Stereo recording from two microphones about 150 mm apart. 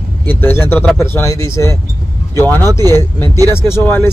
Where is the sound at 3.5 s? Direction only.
20° left (ahead or behind).